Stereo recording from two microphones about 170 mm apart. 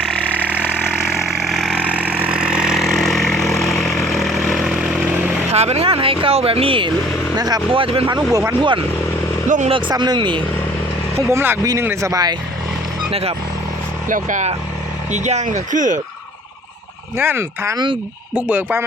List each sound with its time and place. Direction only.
1.0 s vehicle: centre (ahead or behind)
5.5 s speech: 40° right (ahead or behind)
8.3 s speech: 20° right (ahead or behind)
9.5 s speech: 45° right (ahead or behind)
9.7 s speech: 25° right (ahead or behind)
11.2 s speech: 15° right (ahead or behind)
13.1 s speech: 35° right (ahead or behind)
14.1 s speech: 50° right (ahead or behind)
17.2 s speech: 15° right (ahead or behind)